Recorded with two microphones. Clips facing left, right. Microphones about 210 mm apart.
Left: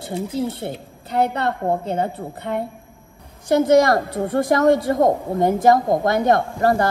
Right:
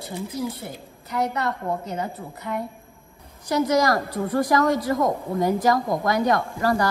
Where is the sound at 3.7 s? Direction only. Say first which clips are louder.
Left 7 dB; 25° left (ahead or behind).